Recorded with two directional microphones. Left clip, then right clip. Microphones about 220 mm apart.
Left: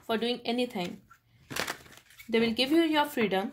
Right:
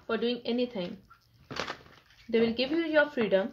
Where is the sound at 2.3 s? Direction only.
45° left (ahead or behind).